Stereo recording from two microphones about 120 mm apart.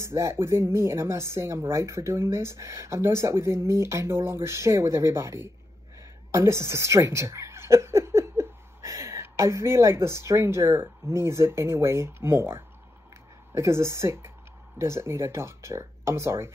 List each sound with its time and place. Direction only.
0.0 s speech: 25° right (ahead or behind)